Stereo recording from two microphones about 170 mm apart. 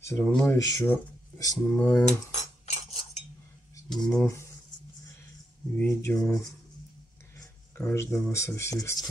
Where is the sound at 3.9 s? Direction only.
5° left (ahead or behind).